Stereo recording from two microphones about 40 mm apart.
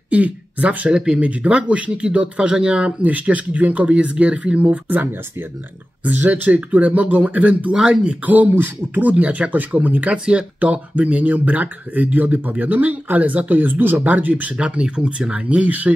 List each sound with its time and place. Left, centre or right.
0.1 s speech: right
0.9 s speech: centre
1.2 s speech: right
6.0 s speech: right
7.7 s speech: right
8.3 s speech: right
9.1 s speech: right
14.0 s speech: right
14.6 s speech: right